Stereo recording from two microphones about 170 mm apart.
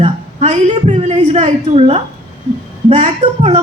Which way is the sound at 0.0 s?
40° right (ahead or behind).